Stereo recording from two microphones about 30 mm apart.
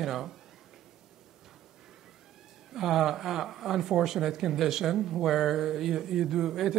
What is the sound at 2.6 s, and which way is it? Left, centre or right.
Speech, centre.